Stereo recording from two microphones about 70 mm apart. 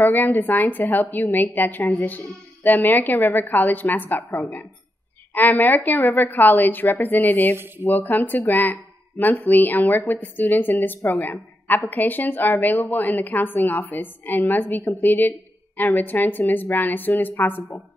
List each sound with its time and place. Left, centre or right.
0.0 s a woman's voice: left